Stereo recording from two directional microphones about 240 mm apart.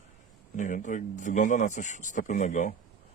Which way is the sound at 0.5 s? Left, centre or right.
Left.